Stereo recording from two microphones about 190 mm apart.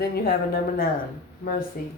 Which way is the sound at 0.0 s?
55° left (ahead or behind).